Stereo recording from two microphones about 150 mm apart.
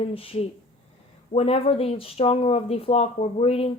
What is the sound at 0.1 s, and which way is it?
Speech, 40° left (ahead or behind).